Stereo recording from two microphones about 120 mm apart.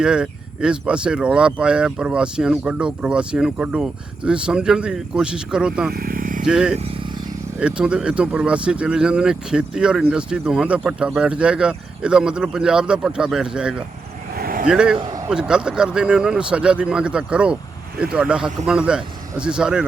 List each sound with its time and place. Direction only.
0.0 s speech: 5° right (ahead or behind)
6.7 s vehicle: 55° right (ahead or behind)
7.6 s speech: 10° right (ahead or behind)